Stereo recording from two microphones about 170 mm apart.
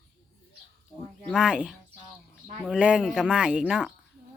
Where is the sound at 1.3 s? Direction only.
5° right (ahead or behind).